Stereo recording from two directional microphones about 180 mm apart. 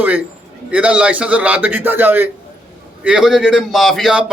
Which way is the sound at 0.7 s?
5° right (ahead or behind).